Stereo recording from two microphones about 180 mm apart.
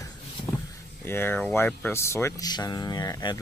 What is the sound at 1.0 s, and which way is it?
Speech, 10° left (ahead or behind).